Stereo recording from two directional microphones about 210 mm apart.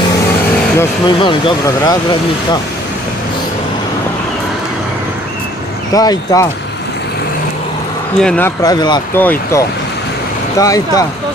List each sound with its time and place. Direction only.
0.7 s speech: 20° left (ahead or behind)
5.9 s speech: 15° left (ahead or behind)
8.2 s speech: 5° left (ahead or behind)